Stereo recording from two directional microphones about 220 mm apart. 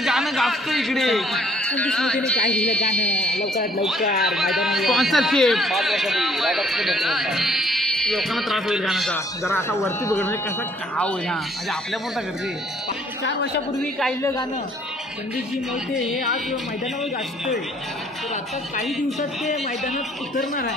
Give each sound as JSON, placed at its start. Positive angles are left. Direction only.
{"t": 0.0, "sound": "a man's voice", "side_deg": 0}
{"t": 9.4, "sound": "a man's voice", "side_deg": 10}
{"t": 15.9, "sound": "a man's voice", "side_deg": 0}
{"t": 18.9, "sound": "a man's voice", "side_deg": 0}
{"t": 19.5, "sound": "a man's voice", "side_deg": 30}